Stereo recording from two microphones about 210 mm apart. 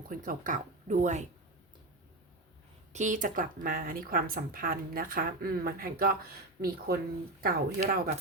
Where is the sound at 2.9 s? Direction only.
35° right (ahead or behind).